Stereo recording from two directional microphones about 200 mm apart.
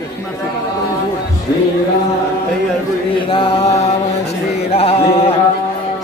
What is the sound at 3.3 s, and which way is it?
Mantra, 25° left (ahead or behind).